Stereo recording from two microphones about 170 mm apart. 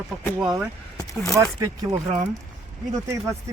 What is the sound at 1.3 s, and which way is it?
Speech, 20° right (ahead or behind).